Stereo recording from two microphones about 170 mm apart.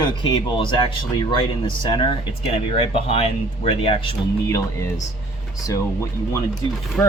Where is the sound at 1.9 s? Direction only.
30° left (ahead or behind).